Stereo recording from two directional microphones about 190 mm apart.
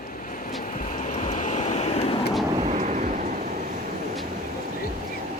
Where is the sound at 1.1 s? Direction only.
40° left (ahead or behind).